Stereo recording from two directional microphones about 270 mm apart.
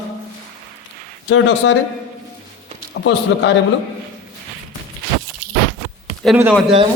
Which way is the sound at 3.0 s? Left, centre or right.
Left.